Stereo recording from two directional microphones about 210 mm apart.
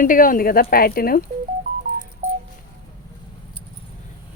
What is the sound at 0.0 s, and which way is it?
Speech, 40° left (ahead or behind).